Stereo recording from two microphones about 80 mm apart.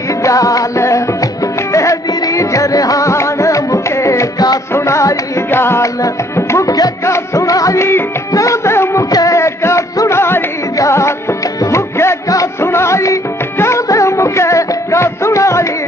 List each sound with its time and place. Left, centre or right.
0.2 s music: left
5.5 s music: left
9.1 s music: left